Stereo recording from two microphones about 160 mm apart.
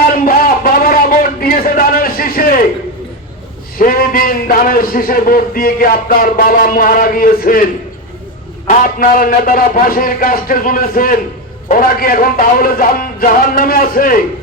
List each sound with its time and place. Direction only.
0.1 s a sound: 65° left (ahead or behind)
3.8 s a man's voice: 65° left (ahead or behind)
8.6 s a man's voice: 60° left (ahead or behind)